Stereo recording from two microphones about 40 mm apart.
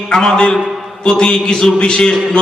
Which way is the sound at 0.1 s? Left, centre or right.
Centre.